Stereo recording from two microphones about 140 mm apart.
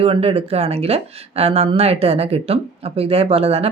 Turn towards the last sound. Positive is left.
turn(degrees=-45)  # may be behind; listen again after turning